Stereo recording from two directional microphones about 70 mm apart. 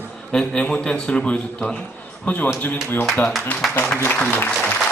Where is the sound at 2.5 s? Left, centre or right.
Left.